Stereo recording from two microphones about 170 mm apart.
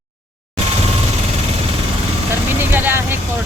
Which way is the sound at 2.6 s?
10° right (ahead or behind).